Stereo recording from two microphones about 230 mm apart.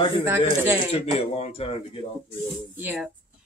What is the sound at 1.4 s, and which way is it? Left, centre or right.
Speech, left.